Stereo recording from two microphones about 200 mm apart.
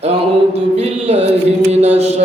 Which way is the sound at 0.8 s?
30° right (ahead or behind).